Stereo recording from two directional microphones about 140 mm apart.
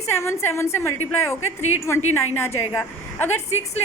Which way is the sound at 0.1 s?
20° left (ahead or behind).